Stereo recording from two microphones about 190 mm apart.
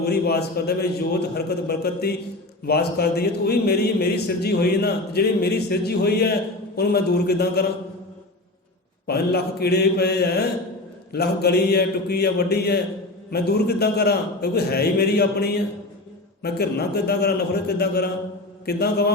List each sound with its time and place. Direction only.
0.0 s a man's voice: 60° left (ahead or behind)
9.0 s a man's voice: 55° left (ahead or behind)